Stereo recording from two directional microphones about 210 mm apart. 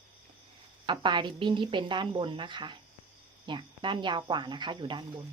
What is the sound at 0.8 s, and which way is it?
Speech, 20° right (ahead or behind).